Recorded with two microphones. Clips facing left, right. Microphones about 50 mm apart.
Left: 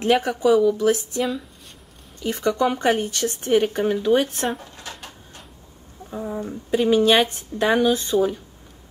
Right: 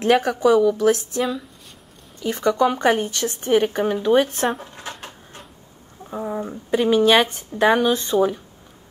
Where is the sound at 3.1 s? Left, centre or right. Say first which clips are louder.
Right 1 dB; centre.